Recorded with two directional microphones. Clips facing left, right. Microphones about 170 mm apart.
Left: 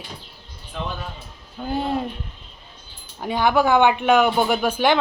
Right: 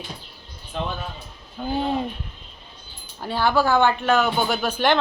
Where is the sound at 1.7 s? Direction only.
Centre (ahead or behind).